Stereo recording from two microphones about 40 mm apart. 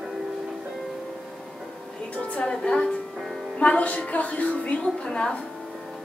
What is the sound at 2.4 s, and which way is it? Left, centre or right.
A woman's voice, left.